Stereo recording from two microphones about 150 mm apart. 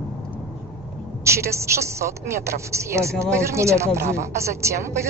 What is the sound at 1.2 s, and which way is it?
A woman's voice, 20° right (ahead or behind).